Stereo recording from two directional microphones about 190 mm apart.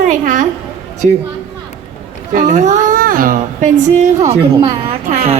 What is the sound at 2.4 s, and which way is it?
A woman's voice, 40° right (ahead or behind).